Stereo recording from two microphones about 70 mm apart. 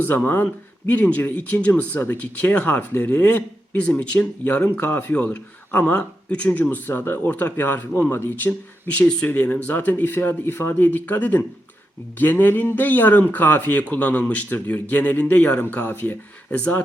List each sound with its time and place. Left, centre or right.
0.9 s speech: left
8.9 s speech: centre